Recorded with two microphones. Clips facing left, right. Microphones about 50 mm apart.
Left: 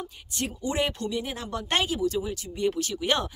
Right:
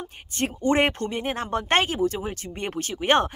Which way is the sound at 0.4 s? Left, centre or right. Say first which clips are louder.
Right 6 dB; right.